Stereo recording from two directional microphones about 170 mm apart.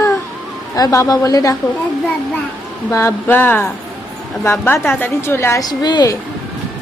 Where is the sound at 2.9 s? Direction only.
15° left (ahead or behind).